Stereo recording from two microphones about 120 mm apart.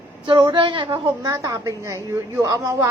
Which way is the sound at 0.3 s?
40° right (ahead or behind).